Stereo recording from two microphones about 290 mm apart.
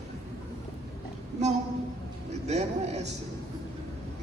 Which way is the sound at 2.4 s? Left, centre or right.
Right.